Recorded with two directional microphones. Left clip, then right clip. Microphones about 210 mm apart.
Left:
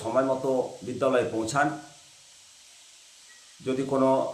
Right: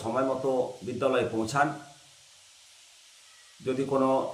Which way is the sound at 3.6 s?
5° left (ahead or behind).